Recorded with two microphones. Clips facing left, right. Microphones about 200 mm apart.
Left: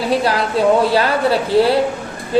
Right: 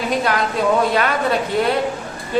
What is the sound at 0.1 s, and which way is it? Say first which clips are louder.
A man's voice: left 4 dB; 30° left (ahead or behind).